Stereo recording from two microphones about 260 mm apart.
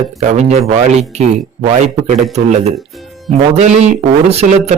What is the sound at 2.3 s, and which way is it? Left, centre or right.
Speech, right.